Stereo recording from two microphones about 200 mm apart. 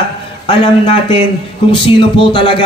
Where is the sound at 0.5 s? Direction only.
25° left (ahead or behind).